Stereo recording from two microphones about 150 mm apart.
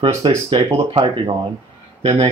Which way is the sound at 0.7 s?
40° right (ahead or behind).